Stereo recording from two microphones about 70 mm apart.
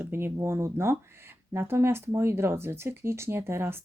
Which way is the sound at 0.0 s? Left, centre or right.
Right.